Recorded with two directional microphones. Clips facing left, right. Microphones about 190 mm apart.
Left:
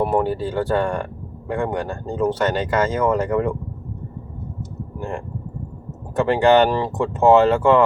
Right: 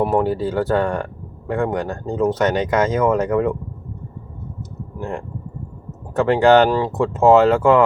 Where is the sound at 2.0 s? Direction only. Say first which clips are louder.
Right 2 dB; 5° right (ahead or behind).